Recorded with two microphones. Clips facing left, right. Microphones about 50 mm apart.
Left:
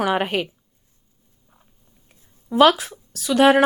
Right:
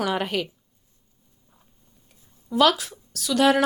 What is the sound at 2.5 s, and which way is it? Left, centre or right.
A woman's voice, left.